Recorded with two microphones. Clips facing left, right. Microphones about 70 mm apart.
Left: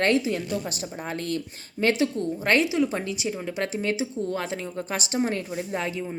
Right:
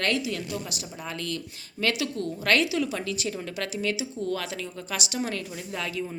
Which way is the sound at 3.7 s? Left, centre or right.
Left.